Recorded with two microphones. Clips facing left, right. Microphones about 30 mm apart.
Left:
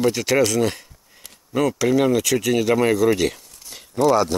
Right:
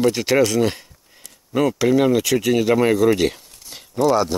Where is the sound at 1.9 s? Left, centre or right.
Centre.